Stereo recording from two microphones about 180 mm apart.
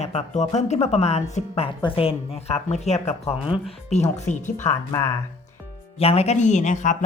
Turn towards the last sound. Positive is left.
turn(degrees=45)  # may be behind; listen again after turning